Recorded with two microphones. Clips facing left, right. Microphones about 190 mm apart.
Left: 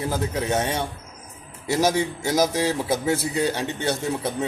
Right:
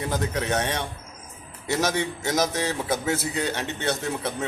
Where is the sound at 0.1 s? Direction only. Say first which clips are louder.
Even; 5° left (ahead or behind).